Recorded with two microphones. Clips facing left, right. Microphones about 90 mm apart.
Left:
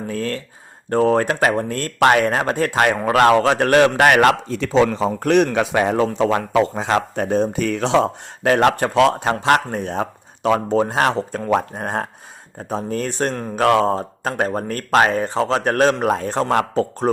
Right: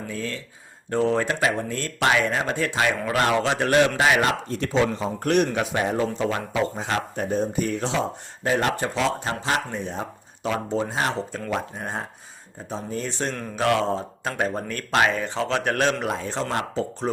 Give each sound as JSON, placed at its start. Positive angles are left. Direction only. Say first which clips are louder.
{"t": 0.1, "sound": "speech", "louder": "left 9 dB", "side_deg": 55}
{"t": 4.9, "sound": "a man's voice", "louder": "left 6 dB", "side_deg": 80}